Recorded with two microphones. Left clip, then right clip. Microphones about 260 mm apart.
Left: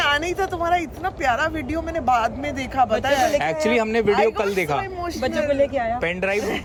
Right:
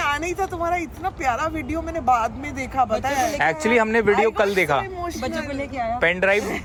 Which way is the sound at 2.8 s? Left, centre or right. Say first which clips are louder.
Left 2 dB; right.